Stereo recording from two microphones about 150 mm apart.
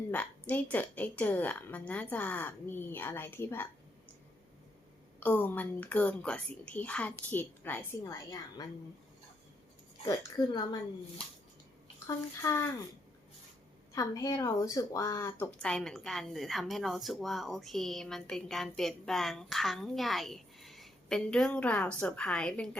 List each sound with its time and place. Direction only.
0.1 s a woman's voice: 10° left (ahead or behind)
5.2 s a woman's voice: 15° left (ahead or behind)
10.1 s speech: 25° left (ahead or behind)
12.0 s speech: 20° left (ahead or behind)
13.9 s speech: 20° left (ahead or behind)
15.5 s a woman's voice: 5° left (ahead or behind)